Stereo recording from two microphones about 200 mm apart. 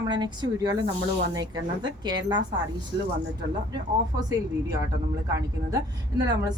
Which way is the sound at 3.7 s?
20° right (ahead or behind).